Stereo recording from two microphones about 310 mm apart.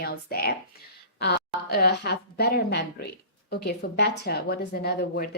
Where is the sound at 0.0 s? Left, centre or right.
Left.